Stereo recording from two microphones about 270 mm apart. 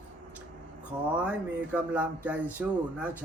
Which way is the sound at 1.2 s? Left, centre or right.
Centre.